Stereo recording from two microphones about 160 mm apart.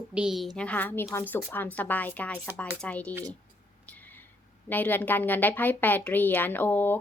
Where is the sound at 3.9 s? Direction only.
10° left (ahead or behind).